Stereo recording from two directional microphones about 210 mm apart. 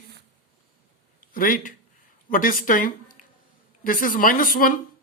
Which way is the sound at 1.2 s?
40° left (ahead or behind).